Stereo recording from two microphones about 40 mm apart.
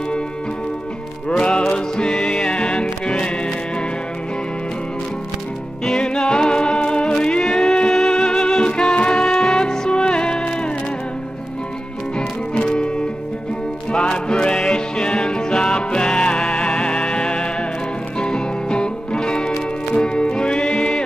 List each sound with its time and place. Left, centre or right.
1.3 s music: left
5.9 s music: left
13.9 s music: centre
20.1 s music: left